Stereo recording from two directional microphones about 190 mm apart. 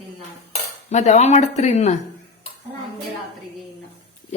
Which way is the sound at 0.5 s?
35° left (ahead or behind).